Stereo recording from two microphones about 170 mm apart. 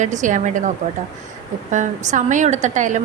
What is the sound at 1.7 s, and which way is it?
Speech, 45° right (ahead or behind).